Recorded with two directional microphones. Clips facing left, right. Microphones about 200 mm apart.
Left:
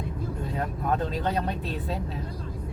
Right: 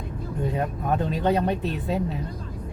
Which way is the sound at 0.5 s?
20° right (ahead or behind).